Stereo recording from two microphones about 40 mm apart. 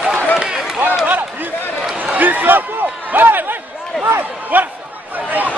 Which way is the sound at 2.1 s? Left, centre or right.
Right.